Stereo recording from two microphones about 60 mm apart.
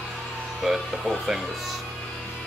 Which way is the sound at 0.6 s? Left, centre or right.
Centre.